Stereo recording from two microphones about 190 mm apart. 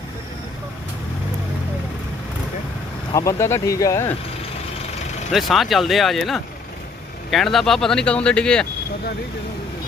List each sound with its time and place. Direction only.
3.1 s speech: 15° left (ahead or behind)
5.3 s speech: centre (ahead or behind)